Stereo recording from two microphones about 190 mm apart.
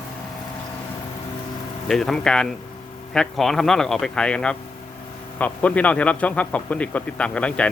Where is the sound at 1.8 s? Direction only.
Centre (ahead or behind).